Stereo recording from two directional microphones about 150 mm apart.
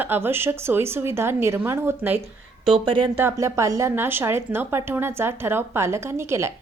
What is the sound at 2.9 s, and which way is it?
Speech, 35° right (ahead or behind).